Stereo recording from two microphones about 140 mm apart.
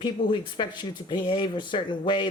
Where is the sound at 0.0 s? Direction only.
35° left (ahead or behind).